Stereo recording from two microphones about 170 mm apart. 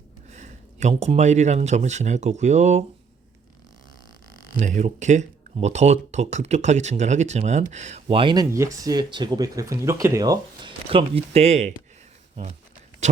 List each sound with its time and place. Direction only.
0.3 s speech: 45° right (ahead or behind)
4.6 s speech: 45° right (ahead or behind)
8.0 s speech: 30° right (ahead or behind)